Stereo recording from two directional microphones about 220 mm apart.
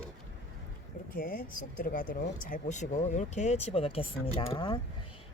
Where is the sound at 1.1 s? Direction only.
40° left (ahead or behind).